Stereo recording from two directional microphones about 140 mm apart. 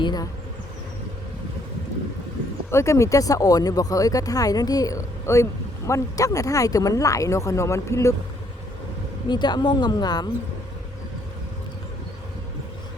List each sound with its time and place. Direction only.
0.0 s speech: 30° left (ahead or behind)
2.6 s speech: 20° left (ahead or behind)
9.3 s a woman's voice: 30° left (ahead or behind)